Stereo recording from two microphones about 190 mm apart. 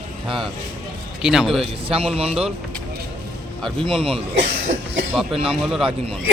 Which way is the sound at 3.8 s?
30° right (ahead or behind).